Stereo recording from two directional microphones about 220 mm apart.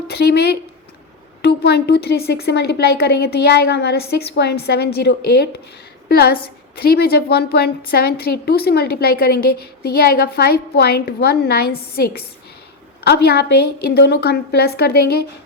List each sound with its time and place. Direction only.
0.1 s a woman's voice: 45° left (ahead or behind)